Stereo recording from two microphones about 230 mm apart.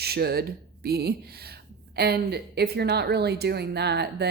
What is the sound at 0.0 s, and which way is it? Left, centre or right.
Speech, right.